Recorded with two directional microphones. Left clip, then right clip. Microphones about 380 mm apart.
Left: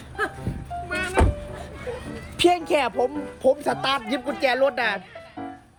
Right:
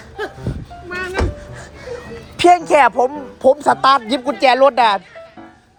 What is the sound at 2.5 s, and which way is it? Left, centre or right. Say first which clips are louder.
A woman's voice: right 11 dB; right.